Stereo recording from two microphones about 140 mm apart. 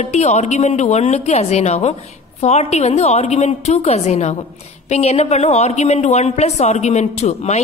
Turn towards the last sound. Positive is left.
turn(degrees=50)  # may be behind; listen again after turning